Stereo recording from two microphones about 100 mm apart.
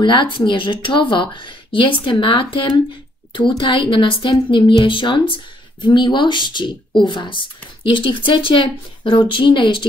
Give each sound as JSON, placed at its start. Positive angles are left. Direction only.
{"t": 0.0, "sound": "speech", "side_deg": 55}